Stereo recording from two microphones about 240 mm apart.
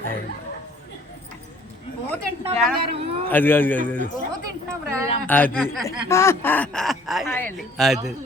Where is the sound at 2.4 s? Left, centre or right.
Right.